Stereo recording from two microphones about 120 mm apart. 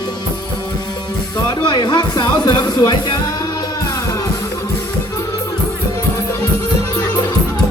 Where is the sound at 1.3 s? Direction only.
35° left (ahead or behind).